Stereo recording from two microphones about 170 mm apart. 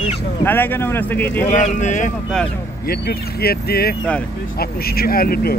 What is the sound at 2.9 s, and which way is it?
Speech, 65° left (ahead or behind).